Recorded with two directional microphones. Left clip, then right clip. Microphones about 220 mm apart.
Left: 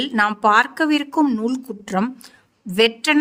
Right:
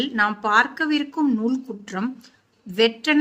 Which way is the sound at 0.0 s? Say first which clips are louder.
Left 4 dB; 50° left (ahead or behind).